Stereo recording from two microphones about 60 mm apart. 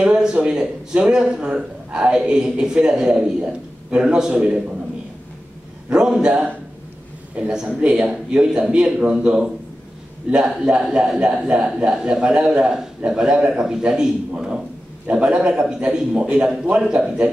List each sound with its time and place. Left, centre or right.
0.0 s speech: centre
5.9 s speech: centre
7.4 s a man's voice: centre